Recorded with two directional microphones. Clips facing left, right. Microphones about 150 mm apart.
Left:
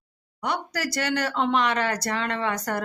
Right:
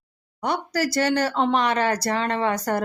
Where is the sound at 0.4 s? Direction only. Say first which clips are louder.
Right 4 dB; 35° right (ahead or behind).